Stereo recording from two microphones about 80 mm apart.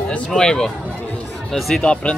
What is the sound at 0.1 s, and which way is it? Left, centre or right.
Speech, centre.